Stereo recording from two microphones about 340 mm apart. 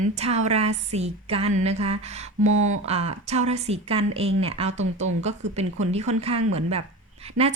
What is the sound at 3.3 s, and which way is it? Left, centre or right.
A woman's voice, centre.